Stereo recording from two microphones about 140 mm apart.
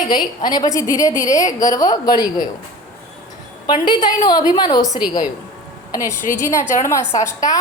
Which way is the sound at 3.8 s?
30° left (ahead or behind).